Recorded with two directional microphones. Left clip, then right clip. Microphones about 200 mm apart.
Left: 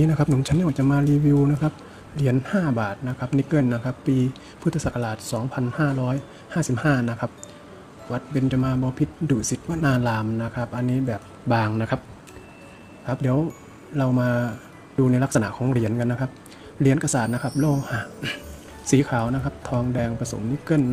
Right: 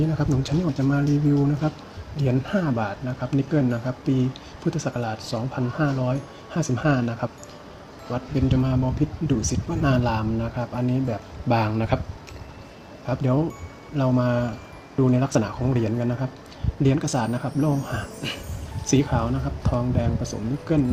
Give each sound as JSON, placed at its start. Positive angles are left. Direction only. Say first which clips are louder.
{"t": 0.2, "sound": "speech", "louder": "left 2 dB", "side_deg": 25}
{"t": 2.1, "sound": "speech", "louder": "left 1 dB", "side_deg": 25}
{"t": 13.1, "sound": "speech", "louder": "even", "side_deg": 15}